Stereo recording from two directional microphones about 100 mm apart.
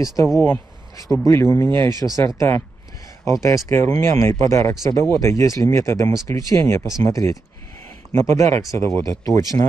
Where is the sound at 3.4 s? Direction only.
30° left (ahead or behind).